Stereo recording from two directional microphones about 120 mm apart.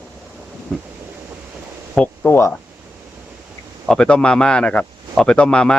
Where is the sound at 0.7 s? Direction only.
Centre (ahead or behind).